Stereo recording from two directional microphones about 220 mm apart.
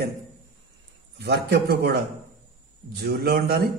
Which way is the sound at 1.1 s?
50° right (ahead or behind).